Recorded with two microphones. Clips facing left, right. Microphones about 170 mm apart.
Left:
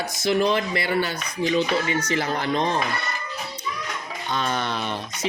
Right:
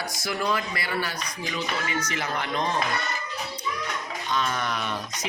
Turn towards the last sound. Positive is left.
turn(degrees=30)  # may be behind; listen again after turning